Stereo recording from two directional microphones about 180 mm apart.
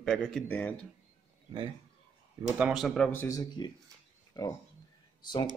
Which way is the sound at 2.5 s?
5° right (ahead or behind).